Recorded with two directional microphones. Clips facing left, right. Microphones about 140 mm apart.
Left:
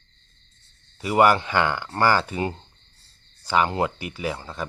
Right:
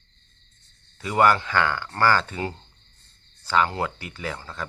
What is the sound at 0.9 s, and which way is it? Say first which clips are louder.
Speech: left 2 dB; 15° left (ahead or behind).